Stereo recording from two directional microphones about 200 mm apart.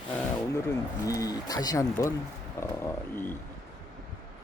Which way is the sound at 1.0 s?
15° left (ahead or behind).